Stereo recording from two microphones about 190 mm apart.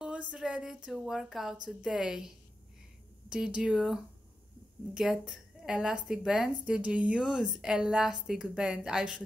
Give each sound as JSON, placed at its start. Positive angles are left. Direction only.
{"t": 0.0, "sound": "a woman's voice", "side_deg": -5}